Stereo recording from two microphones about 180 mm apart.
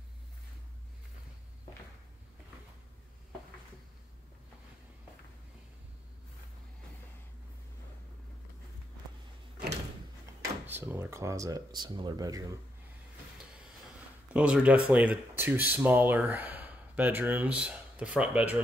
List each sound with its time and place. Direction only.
10.7 s speech: 10° right (ahead or behind)
13.4 s vehicle: 5° right (ahead or behind)
14.3 s speech: 5° right (ahead or behind)